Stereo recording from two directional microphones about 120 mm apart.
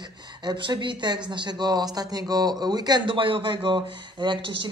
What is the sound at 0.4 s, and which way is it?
Speech, 40° right (ahead or behind).